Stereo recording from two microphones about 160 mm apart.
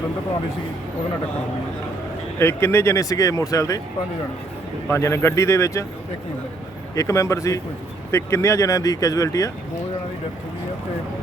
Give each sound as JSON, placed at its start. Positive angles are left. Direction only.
{"t": 2.4, "sound": "speech", "side_deg": 15}
{"t": 4.9, "sound": "speech", "side_deg": 20}
{"t": 6.9, "sound": "speech", "side_deg": 20}